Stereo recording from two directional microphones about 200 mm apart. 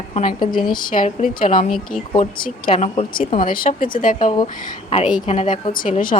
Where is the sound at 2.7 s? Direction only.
30° left (ahead or behind).